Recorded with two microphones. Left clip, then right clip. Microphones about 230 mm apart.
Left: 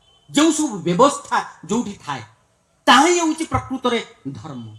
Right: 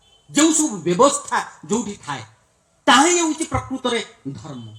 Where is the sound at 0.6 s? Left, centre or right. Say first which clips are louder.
Even; left.